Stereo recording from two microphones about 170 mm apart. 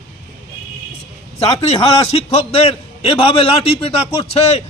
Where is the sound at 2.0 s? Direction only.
35° left (ahead or behind).